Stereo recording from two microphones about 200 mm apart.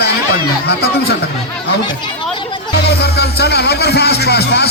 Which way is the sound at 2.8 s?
55° left (ahead or behind).